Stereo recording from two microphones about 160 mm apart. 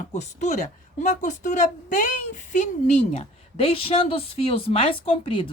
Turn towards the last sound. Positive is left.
turn(degrees=35)  # may be behind; listen again after turning